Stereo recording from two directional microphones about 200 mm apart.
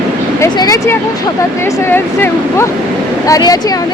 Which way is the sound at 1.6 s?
15° left (ahead or behind).